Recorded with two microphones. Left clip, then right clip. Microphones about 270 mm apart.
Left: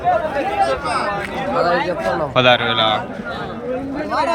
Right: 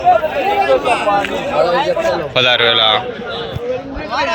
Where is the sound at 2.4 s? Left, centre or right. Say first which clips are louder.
Right 2 dB; centre.